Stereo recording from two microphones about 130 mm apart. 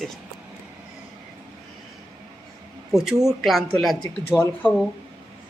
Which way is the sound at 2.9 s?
5° right (ahead or behind).